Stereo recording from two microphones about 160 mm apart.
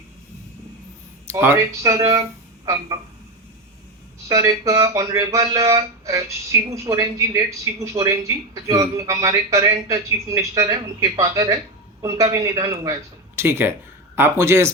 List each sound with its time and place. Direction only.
1.3 s speech: 15° right (ahead or behind)
4.3 s speech: 20° right (ahead or behind)